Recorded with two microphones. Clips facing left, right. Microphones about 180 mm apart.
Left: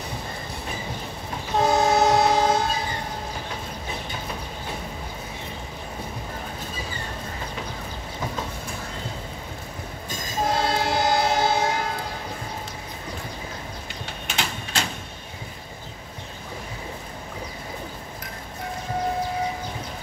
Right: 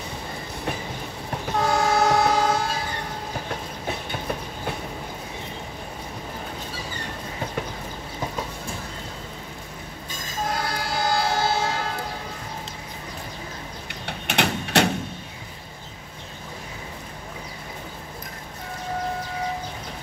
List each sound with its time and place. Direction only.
1.6 s train: 20° left (ahead or behind)
10.5 s train: 25° left (ahead or behind)
13.8 s a sound: 65° right (ahead or behind)